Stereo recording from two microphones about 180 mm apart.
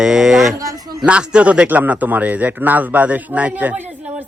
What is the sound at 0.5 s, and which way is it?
Speech, 20° right (ahead or behind).